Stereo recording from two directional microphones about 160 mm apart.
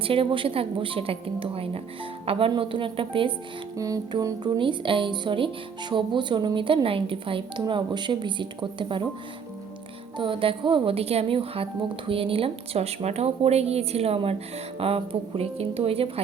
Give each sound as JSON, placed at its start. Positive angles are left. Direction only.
{"t": 0.0, "sound": "a woman's voice", "side_deg": -35}
{"t": 3.8, "sound": "a woman's voice", "side_deg": -20}
{"t": 10.2, "sound": "a woman's voice", "side_deg": -35}